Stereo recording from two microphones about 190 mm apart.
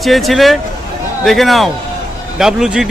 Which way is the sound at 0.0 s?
Centre (ahead or behind).